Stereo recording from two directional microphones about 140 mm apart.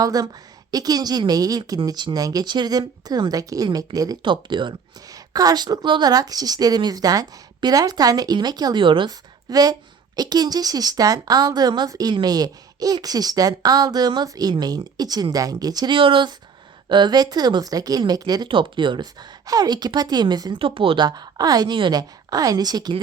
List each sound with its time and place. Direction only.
0.0 s a woman's voice: 25° right (ahead or behind)